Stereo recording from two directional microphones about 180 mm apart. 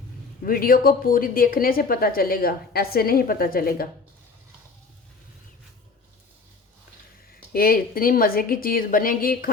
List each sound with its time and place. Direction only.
0.4 s a woman's voice: 55° left (ahead or behind)
7.5 s a woman's voice: 55° left (ahead or behind)